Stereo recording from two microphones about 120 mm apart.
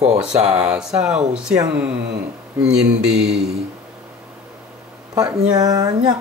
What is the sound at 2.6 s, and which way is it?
Mantra, 5° right (ahead or behind).